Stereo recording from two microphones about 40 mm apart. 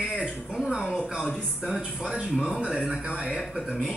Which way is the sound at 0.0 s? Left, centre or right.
Right.